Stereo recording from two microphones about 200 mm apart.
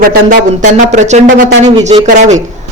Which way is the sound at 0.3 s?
40° right (ahead or behind).